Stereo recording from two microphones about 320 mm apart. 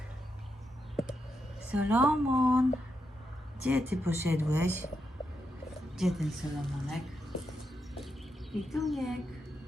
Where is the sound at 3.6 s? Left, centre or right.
Centre.